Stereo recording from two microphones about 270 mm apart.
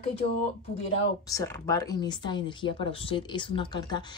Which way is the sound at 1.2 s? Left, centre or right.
Centre.